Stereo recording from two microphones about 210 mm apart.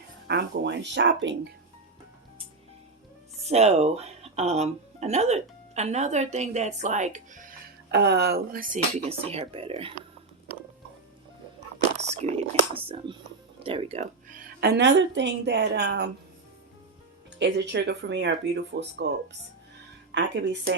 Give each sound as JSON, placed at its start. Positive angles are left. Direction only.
{"t": 0.3, "sound": "speech", "side_deg": -55}
{"t": 3.5, "sound": "speech", "side_deg": -30}
{"t": 7.9, "sound": "a woman's voice", "side_deg": -55}
{"t": 9.0, "sound": "speech", "side_deg": -30}
{"t": 12.0, "sound": "a woman's voice", "side_deg": -30}
{"t": 17.4, "sound": "speech", "side_deg": -55}
{"t": 20.1, "sound": "speech", "side_deg": -55}